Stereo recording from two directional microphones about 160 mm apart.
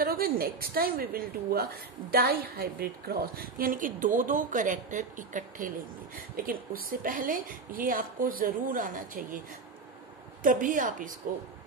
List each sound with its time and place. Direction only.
0.0 s a woman's voice: 65° right (ahead or behind)
6.3 s a woman's voice: 65° right (ahead or behind)
10.4 s a woman's voice: 55° right (ahead or behind)